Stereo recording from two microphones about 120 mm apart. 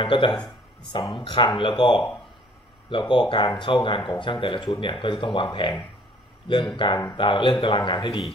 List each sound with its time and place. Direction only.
0.0 s speech: 45° left (ahead or behind)
6.8 s speech: 40° left (ahead or behind)